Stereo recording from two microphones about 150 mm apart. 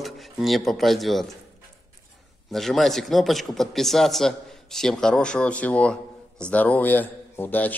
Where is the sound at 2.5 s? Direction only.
Centre (ahead or behind).